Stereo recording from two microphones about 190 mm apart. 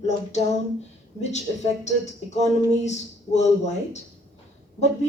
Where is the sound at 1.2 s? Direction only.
35° left (ahead or behind).